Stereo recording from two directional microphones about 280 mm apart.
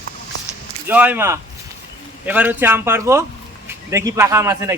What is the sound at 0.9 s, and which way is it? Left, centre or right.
Speech, centre.